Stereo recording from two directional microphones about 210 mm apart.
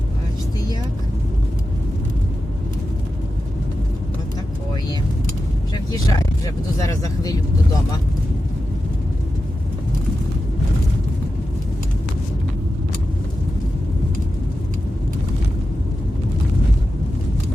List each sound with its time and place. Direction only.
5.7 s vehicle: 15° left (ahead or behind)